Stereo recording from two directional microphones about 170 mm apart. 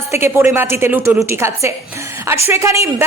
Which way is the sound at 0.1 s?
15° right (ahead or behind).